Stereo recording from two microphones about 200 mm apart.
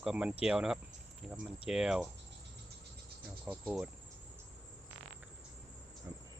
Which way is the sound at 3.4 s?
5° right (ahead or behind).